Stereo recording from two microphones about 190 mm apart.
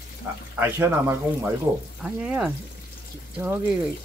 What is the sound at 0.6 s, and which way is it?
Speech, 15° right (ahead or behind).